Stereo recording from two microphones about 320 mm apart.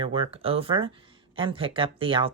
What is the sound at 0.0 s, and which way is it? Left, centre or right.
Speech, centre.